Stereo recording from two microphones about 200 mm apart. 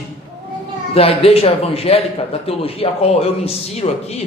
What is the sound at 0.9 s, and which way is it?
A man's voice, 30° left (ahead or behind).